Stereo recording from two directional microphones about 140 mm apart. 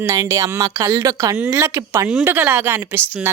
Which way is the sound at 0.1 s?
25° right (ahead or behind).